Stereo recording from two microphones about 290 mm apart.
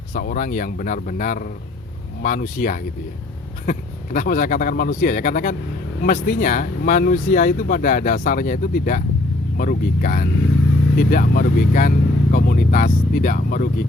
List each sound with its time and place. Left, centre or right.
0.1 s speech: left